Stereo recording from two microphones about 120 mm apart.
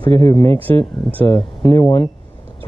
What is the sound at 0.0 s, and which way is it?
Speech, 30° left (ahead or behind).